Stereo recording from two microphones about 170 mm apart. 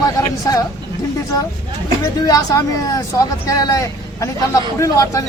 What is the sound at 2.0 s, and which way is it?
Speech, 20° left (ahead or behind).